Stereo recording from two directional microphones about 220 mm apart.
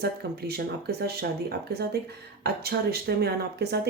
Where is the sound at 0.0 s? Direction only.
45° right (ahead or behind).